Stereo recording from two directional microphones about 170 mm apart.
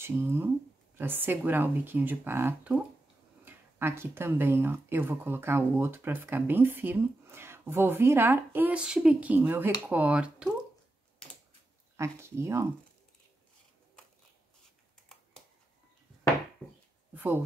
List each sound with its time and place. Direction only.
0.0 s speech: 15° right (ahead or behind)
12.0 s speech: 15° right (ahead or behind)
17.1 s a sound: 10° right (ahead or behind)